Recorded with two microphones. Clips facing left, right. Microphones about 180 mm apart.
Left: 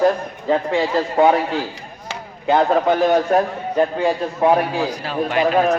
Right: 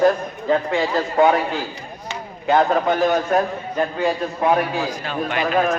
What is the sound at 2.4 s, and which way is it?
A man's voice, 30° left (ahead or behind).